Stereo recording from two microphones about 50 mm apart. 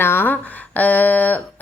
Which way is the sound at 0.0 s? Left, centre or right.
Left.